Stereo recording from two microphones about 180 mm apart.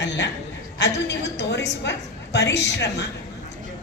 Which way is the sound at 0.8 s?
70° left (ahead or behind).